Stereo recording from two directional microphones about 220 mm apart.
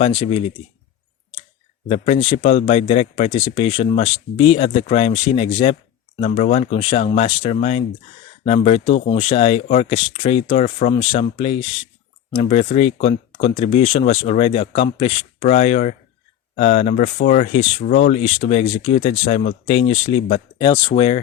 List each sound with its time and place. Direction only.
0.0 s speech: 25° left (ahead or behind)
1.9 s speech: 30° left (ahead or behind)